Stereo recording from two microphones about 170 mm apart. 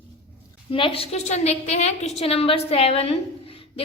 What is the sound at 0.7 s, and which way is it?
A woman's voice, 35° left (ahead or behind).